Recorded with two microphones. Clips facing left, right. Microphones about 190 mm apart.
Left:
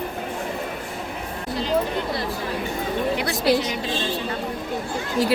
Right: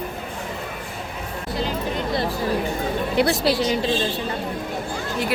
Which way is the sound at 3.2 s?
30° right (ahead or behind).